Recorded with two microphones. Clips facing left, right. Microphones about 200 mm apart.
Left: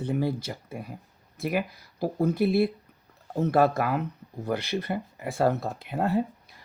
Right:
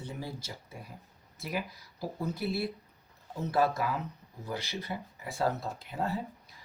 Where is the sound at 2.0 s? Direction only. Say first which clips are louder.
Left 10 dB; 60° left (ahead or behind).